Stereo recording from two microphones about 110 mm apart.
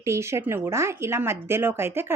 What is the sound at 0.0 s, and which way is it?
Speech, 25° right (ahead or behind).